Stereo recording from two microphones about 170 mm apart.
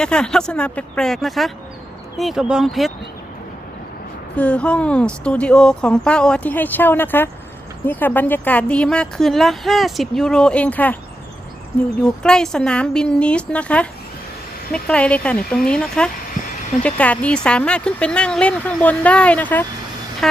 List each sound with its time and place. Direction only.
0.0 s a woman's voice: 5° left (ahead or behind)
4.4 s speech: 10° left (ahead or behind)
12.0 s a woman's voice: 5° left (ahead or behind)